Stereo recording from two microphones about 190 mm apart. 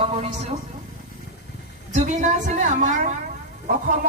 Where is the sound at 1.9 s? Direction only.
40° right (ahead or behind).